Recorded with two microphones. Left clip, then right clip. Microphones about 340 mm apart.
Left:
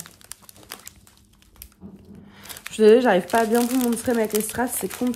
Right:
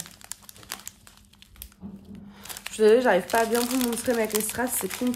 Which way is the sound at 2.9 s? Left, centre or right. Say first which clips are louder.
Left 4 dB; centre.